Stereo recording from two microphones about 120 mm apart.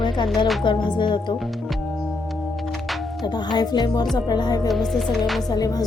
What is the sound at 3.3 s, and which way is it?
A woman's voice, 35° left (ahead or behind).